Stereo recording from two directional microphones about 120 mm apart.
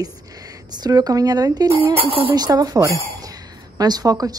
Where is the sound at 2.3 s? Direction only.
35° right (ahead or behind).